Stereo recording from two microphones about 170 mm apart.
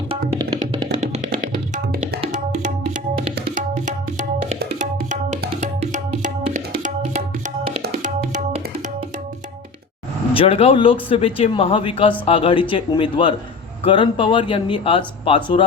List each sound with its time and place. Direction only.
0.1 s music: 30° right (ahead or behind)
1.7 s music: 50° right (ahead or behind)
2.3 s tabla: 50° right (ahead or behind)
8.0 s music: 50° right (ahead or behind)
10.3 s speech: 35° left (ahead or behind)